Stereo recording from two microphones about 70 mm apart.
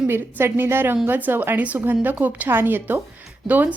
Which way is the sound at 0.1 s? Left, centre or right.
Right.